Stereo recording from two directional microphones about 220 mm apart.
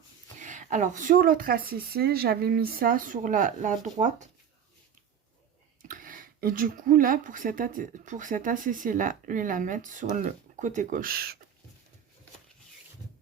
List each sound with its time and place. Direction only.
0.3 s speech: 35° right (ahead or behind)
5.9 s speech: 40° right (ahead or behind)